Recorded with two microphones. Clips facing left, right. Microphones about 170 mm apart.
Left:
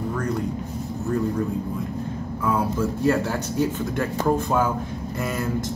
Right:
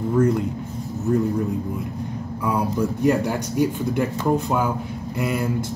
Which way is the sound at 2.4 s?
15° right (ahead or behind).